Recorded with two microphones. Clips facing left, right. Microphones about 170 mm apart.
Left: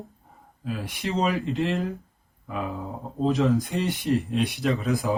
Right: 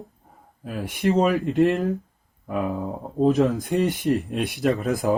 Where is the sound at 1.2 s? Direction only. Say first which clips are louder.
Right 6 dB; 60° right (ahead or behind).